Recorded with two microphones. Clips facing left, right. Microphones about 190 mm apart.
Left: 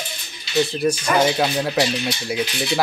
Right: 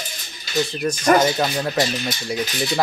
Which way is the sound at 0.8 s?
10° left (ahead or behind).